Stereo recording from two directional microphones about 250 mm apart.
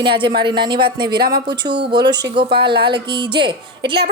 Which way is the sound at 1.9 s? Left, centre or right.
Centre.